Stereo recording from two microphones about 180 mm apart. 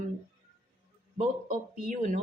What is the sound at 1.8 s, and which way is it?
Speech, 45° right (ahead or behind).